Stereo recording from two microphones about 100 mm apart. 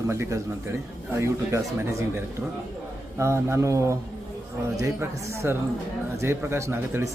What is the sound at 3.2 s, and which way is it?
Speech, 25° right (ahead or behind).